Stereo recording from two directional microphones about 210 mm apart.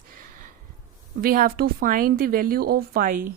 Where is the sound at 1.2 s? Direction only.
45° right (ahead or behind).